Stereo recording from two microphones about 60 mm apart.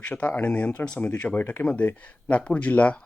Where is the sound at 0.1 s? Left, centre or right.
Left.